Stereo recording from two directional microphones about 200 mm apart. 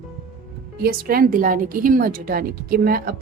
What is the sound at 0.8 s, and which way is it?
Speech, 45° right (ahead or behind).